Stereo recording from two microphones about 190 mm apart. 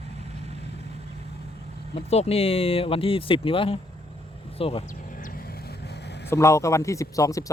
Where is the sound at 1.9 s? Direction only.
35° left (ahead or behind).